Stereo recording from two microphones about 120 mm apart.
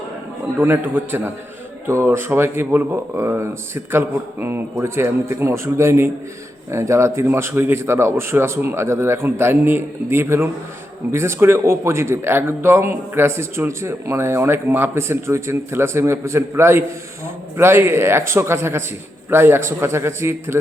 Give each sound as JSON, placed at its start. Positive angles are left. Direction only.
{"t": 0.6, "sound": "a man's voice", "side_deg": -20}